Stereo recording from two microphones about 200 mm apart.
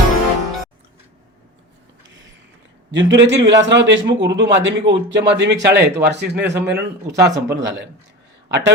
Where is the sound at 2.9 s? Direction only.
65° right (ahead or behind).